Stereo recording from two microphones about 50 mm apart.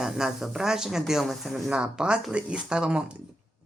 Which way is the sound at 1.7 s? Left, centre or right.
Centre.